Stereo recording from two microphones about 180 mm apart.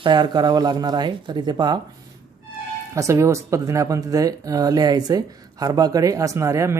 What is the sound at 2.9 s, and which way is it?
Speech, 15° right (ahead or behind).